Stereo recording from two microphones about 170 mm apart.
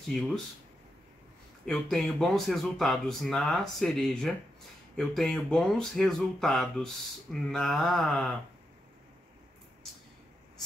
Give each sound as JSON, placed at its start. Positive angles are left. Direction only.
{"t": 1.7, "sound": "speech", "side_deg": 0}